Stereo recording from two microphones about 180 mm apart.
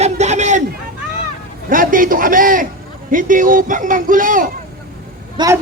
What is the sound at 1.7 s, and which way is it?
A man's voice, 50° right (ahead or behind).